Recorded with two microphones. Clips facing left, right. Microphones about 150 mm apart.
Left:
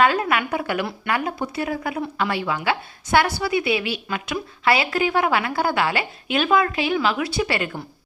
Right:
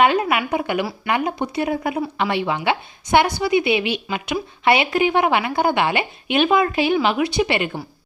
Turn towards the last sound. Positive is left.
turn(degrees=-20)  # may be behind; listen again after turning